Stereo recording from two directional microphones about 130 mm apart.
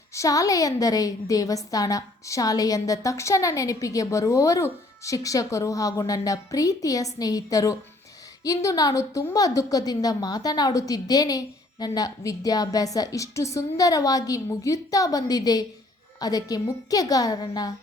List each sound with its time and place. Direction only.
0.1 s a woman's voice: 25° left (ahead or behind)